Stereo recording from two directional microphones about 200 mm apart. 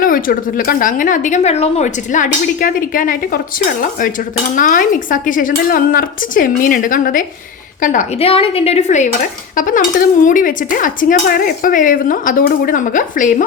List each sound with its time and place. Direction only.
0.0 s dishes: 45° left (ahead or behind)